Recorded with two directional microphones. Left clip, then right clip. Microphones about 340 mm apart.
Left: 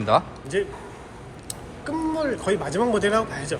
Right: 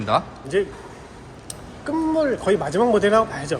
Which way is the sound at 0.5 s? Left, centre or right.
Centre.